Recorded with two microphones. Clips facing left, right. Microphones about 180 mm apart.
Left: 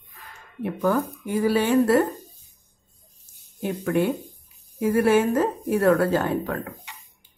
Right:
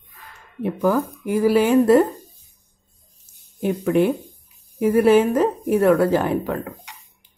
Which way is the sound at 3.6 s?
20° right (ahead or behind).